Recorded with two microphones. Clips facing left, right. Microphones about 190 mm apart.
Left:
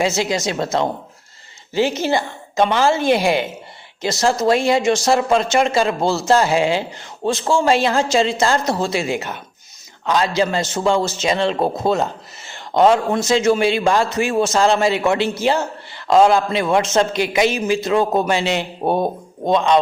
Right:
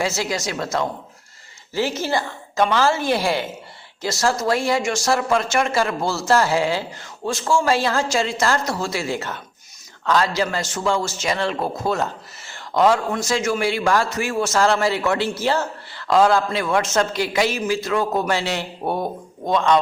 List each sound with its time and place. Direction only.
0.0 s speech: 20° left (ahead or behind)